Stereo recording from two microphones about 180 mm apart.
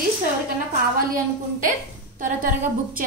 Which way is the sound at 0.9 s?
50° right (ahead or behind).